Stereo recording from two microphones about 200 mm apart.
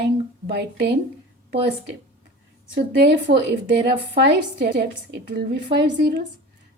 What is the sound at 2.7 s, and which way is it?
A woman's voice, 55° right (ahead or behind).